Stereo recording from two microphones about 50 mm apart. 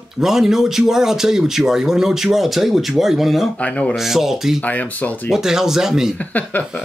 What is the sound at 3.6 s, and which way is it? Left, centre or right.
Speech, left.